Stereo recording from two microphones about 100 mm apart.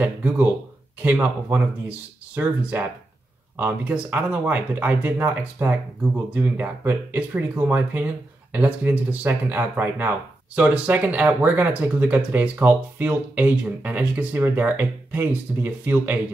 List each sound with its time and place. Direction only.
0.0 s speech: 15° right (ahead or behind)